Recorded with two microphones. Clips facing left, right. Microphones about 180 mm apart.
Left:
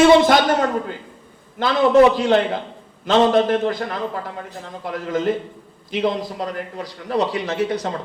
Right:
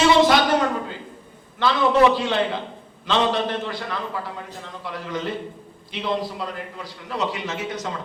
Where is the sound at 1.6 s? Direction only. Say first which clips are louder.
Left 4 dB; 45° left (ahead or behind).